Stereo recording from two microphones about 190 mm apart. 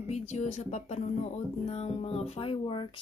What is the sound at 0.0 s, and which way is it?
Speech, 35° left (ahead or behind).